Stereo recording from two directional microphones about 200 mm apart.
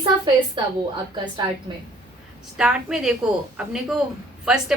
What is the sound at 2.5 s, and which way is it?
A woman's voice, 5° right (ahead or behind).